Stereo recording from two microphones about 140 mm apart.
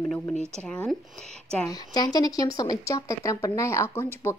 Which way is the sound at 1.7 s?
30° left (ahead or behind).